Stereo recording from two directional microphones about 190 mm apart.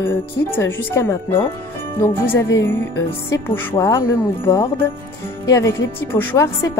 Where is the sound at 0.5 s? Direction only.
15° left (ahead or behind).